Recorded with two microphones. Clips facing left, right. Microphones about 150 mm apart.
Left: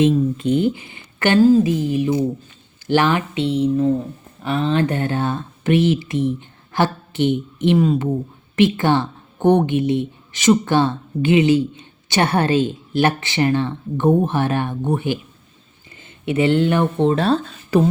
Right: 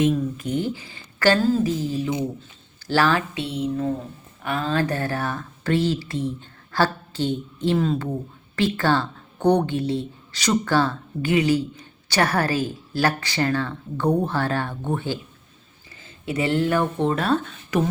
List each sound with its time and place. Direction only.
0.0 s a woman's voice: 25° left (ahead or behind)